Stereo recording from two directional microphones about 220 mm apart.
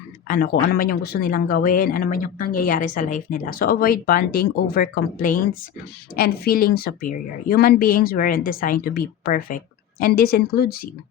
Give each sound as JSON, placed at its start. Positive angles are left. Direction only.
{"t": 0.3, "sound": "speech", "side_deg": 40}